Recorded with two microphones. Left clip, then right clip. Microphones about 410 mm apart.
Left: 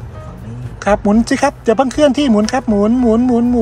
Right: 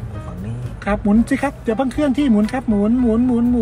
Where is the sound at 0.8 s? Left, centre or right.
Centre.